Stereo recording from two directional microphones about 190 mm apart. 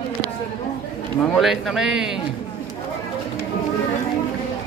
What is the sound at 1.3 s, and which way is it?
Speech, centre (ahead or behind).